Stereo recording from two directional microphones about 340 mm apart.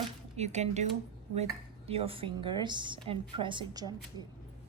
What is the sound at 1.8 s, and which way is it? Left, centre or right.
Speech, centre.